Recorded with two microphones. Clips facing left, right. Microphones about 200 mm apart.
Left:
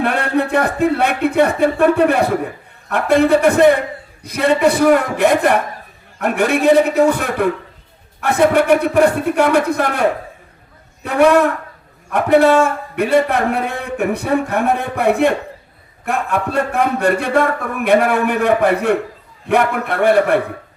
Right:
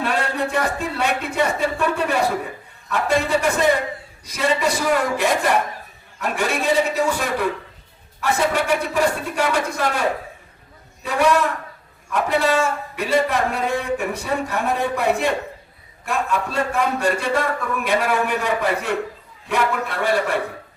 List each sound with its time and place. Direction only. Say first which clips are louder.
0.0 s a man's voice: left 5 dB; 60° left (ahead or behind)